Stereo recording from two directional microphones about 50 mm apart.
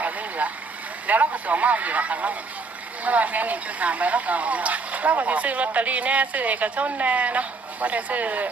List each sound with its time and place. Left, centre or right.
0.0 s vehicle: right
1.0 s speech: right